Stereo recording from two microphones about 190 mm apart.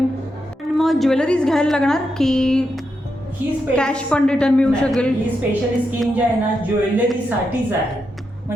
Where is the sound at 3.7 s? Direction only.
5° left (ahead or behind).